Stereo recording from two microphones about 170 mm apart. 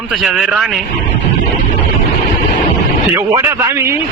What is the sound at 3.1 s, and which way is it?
Speech, 15° right (ahead or behind).